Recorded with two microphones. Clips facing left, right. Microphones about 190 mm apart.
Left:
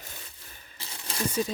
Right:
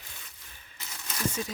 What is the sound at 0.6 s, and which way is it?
Crumpling, 30° left (ahead or behind).